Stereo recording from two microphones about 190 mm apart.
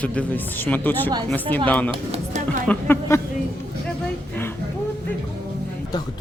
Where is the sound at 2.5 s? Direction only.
10° left (ahead or behind).